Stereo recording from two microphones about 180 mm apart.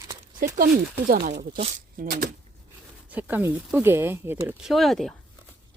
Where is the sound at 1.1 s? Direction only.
50° right (ahead or behind).